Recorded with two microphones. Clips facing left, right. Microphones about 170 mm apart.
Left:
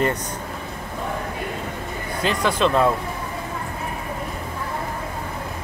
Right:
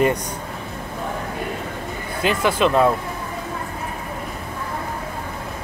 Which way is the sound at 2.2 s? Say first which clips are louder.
Right 2 dB; 10° right (ahead or behind).